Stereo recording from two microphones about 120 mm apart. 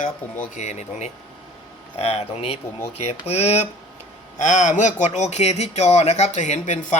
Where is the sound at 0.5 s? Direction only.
80° left.